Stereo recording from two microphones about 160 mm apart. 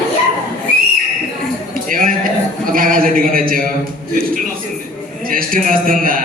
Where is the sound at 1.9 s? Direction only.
60° right (ahead or behind).